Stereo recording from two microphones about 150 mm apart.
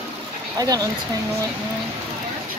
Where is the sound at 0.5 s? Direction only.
25° right (ahead or behind).